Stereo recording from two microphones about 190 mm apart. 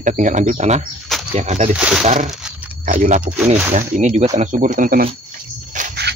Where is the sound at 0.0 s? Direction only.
40° right (ahead or behind).